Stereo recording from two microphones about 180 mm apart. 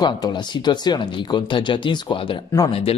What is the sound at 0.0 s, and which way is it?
Speech, 25° left (ahead or behind).